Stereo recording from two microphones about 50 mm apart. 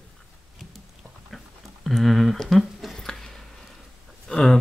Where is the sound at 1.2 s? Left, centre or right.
Centre.